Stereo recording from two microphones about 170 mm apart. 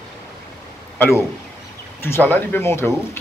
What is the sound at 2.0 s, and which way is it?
Speech, 15° left (ahead or behind).